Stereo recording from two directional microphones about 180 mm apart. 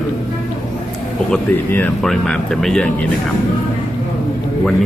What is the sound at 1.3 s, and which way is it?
Speech, 10° left (ahead or behind).